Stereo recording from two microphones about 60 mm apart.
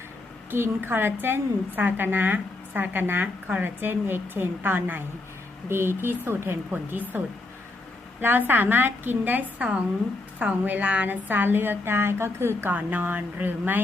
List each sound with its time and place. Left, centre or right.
0.5 s a woman's voice: right
8.2 s a woman's voice: right
9.6 s a woman's voice: centre; by 12.7 s right
12.7 s a woman's voice: right